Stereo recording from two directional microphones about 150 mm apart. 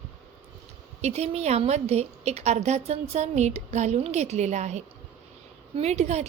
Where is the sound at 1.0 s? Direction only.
45° right (ahead or behind).